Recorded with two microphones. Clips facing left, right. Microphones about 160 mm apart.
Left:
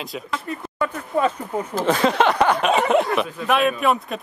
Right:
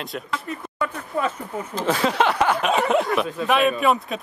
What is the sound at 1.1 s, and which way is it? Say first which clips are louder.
Speech: left 4 dB; 20° left (ahead or behind).